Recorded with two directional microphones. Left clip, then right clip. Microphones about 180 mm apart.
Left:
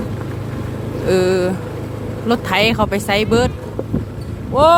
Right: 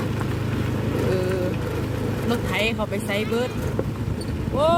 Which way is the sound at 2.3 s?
35° left (ahead or behind).